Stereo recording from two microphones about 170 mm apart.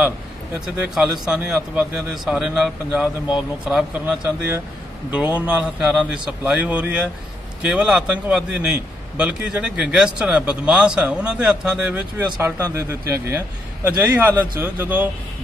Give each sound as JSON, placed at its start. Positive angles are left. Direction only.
{"t": 0.8, "sound": "a man's voice", "side_deg": -5}